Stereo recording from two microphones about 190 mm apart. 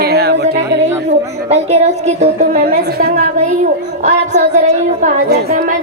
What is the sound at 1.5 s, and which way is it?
A woman's voice, 35° right (ahead or behind).